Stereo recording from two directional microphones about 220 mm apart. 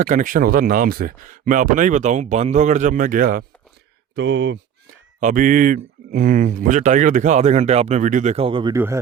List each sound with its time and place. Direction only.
0.0 s speech: 35° right (ahead or behind)
4.1 s speech: 50° right (ahead or behind)
5.2 s speech: 40° right (ahead or behind); by 8.8 s 20° right (ahead or behind)